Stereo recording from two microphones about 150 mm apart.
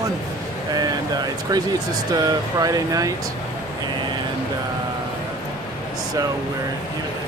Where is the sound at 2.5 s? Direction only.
25° right (ahead or behind).